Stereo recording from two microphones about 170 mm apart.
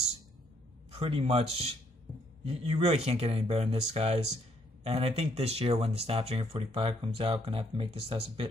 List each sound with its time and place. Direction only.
0.9 s speech: 35° right (ahead or behind)